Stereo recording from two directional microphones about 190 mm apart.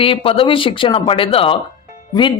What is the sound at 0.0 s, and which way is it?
Speech, 30° left (ahead or behind).